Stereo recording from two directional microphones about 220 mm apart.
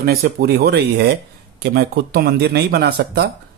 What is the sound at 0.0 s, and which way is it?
Speech, 45° right (ahead or behind).